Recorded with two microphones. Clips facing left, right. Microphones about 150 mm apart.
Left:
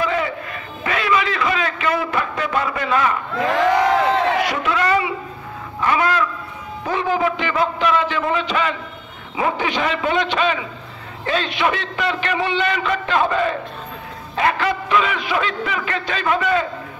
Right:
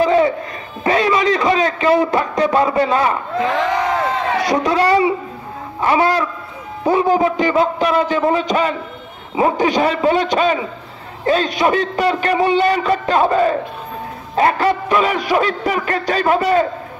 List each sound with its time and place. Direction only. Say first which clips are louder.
0.0 s a sound: right 8 dB; 30° right (ahead or behind)
0.8 s a man's voice: right 5 dB; 35° right (ahead or behind)
4.4 s a man's voice: right 4 dB; 35° right (ahead or behind)